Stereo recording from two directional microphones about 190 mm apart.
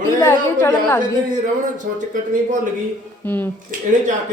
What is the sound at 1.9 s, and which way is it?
Speech, 45° right (ahead or behind).